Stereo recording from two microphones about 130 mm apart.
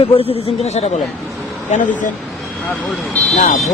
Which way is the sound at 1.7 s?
75° left (ahead or behind).